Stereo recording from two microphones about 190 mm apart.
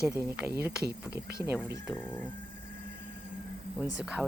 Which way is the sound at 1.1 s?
55° right (ahead or behind).